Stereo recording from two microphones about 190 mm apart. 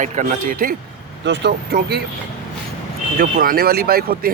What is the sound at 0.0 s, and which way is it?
Speech, 40° right (ahead or behind).